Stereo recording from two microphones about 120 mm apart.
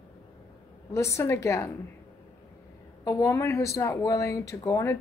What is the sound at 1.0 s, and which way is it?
Speech, 25° left (ahead or behind).